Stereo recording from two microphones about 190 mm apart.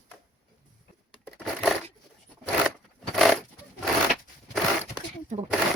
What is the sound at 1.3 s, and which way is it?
Crushing, centre (ahead or behind).